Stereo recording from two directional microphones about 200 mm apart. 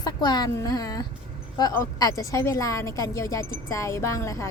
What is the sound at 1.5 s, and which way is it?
A woman's voice, 15° left (ahead or behind).